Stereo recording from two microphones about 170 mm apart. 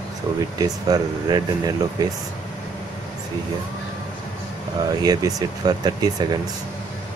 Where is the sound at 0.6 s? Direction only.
20° right (ahead or behind).